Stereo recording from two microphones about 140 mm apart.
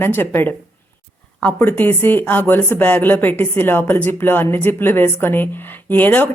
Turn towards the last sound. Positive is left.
turn(degrees=10)  # may be behind; listen again after turning